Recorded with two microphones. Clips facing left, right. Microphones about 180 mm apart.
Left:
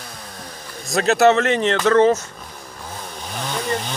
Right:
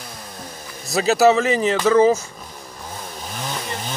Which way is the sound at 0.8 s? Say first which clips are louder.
Even; centre (ahead or behind).